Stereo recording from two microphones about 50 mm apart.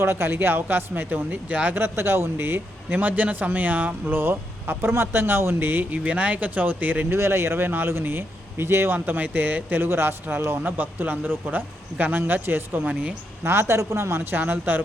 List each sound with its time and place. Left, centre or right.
0.0 s speech: right
1.7 s speech: right
2.9 s a man's voice: right
4.1 s speech: right
7.1 s speech: right
10.6 s a man's voice: right
13.4 s speech: right
14.3 s a man's voice: right